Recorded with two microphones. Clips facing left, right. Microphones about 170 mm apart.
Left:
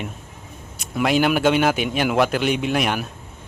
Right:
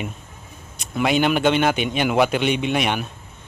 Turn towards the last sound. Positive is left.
turn(degrees=0)  # may be behind; listen again after turning